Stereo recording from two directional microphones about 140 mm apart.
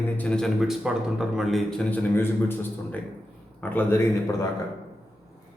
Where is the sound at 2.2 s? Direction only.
15° left (ahead or behind).